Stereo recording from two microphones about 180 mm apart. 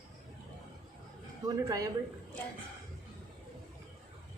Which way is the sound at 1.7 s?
20° right (ahead or behind).